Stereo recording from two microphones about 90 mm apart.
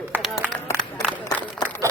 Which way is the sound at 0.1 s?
20° right (ahead or behind).